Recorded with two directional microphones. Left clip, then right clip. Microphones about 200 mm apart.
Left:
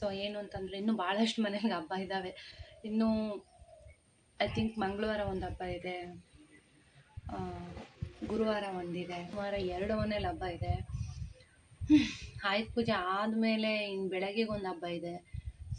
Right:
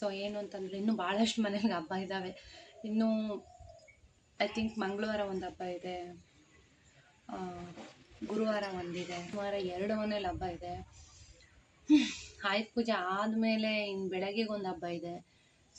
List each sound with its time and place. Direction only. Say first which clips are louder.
0.0 s speech: even; centre (ahead or behind)
4.4 s speech: left 1 dB; centre (ahead or behind)
7.3 s speech: even; centre (ahead or behind)
11.9 s speech: even; centre (ahead or behind)